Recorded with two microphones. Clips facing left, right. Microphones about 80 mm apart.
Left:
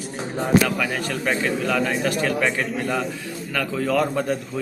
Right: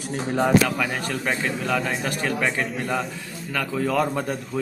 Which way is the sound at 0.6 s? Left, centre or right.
Centre.